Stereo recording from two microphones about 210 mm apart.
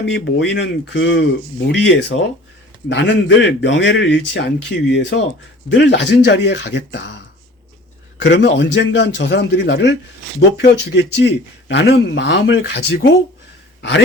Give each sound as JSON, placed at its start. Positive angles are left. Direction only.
{"t": 0.0, "sound": "speech", "side_deg": 60}
{"t": 8.2, "sound": "speech", "side_deg": 55}